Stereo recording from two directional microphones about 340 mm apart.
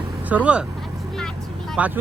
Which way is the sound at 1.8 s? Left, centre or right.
Centre.